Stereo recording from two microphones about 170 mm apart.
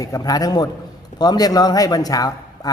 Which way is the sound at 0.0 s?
20° left (ahead or behind).